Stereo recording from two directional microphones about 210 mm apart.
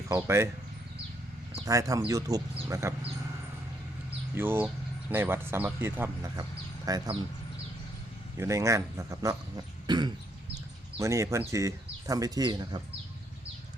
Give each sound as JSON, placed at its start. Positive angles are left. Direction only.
{"t": 0.1, "sound": "speech", "side_deg": -10}
{"t": 1.6, "sound": "speech", "side_deg": -15}
{"t": 4.4, "sound": "speech", "side_deg": -10}
{"t": 8.4, "sound": "speech", "side_deg": -15}
{"t": 9.8, "sound": "throat clearing", "side_deg": -20}
{"t": 11.0, "sound": "speech", "side_deg": -15}